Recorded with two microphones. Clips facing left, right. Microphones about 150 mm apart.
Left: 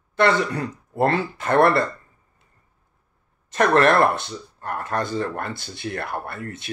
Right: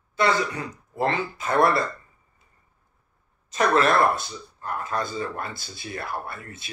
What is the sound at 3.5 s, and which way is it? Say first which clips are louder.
Speech: left 4 dB; 60° left (ahead or behind).